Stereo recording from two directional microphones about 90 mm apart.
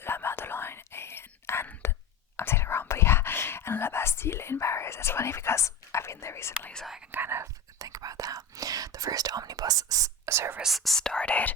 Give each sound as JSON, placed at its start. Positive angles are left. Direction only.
{"t": 0.0, "sound": "whispering", "side_deg": 25}
{"t": 6.7, "sound": "whispering", "side_deg": 0}
{"t": 7.1, "sound": "whispering", "side_deg": -25}
{"t": 7.8, "sound": "whispering", "side_deg": -40}
{"t": 10.6, "sound": "whispering", "side_deg": 0}